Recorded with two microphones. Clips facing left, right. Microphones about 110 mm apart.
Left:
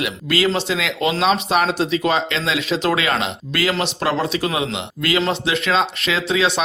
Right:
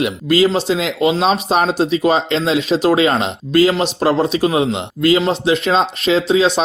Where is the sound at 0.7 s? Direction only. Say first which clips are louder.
Right 5 dB; 25° right (ahead or behind).